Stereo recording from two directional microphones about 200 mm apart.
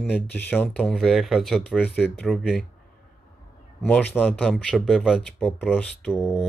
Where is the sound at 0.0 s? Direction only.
10° left (ahead or behind).